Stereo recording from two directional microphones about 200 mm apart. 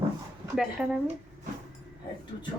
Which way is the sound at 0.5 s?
Centre (ahead or behind).